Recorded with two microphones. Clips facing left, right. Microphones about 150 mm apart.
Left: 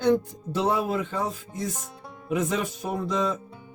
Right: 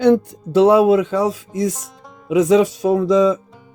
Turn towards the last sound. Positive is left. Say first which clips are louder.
# right 13 dB
turn(degrees=-90)